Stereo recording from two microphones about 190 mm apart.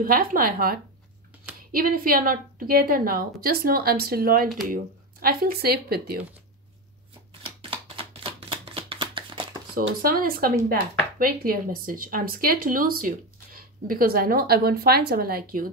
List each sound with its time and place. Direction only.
0.0 s speech: 50° right (ahead or behind)
7.7 s a sound: 30° right (ahead or behind)
10.0 s speech: 50° right (ahead or behind)